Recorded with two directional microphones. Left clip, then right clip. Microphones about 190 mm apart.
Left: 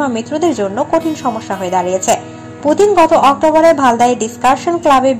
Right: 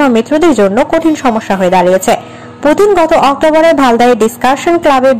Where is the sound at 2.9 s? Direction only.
30° right (ahead or behind).